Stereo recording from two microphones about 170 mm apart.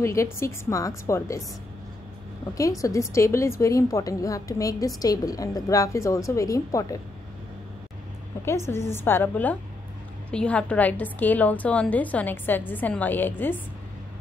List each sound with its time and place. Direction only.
0.0 s a woman's voice: 15° left (ahead or behind)
2.5 s a woman's voice: 20° left (ahead or behind)
8.5 s a woman's voice: 15° left (ahead or behind)